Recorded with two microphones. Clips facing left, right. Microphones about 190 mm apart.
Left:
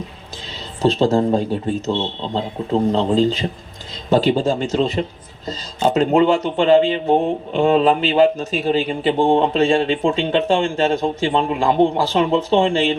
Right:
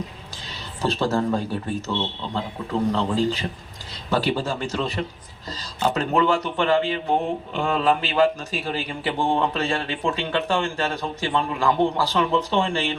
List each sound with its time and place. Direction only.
0.8 s speech: 15° left (ahead or behind)